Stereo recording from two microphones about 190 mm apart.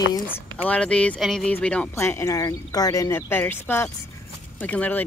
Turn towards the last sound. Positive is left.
turn(degrees=10)  # may be behind; listen again after turning